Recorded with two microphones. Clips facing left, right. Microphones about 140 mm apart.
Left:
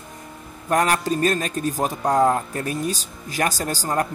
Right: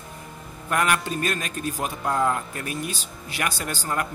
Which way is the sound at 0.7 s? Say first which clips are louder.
Left 4 dB; 35° left (ahead or behind).